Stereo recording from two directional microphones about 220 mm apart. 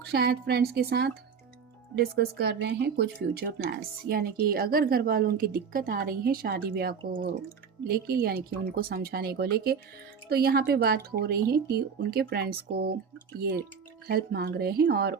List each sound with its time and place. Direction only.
0.0 s speech: 45° right (ahead or behind)
14.1 s speech: 45° right (ahead or behind)